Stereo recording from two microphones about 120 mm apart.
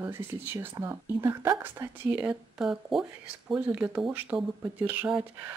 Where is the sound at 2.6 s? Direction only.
5° right (ahead or behind).